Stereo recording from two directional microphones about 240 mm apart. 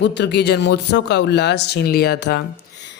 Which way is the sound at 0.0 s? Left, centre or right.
Left.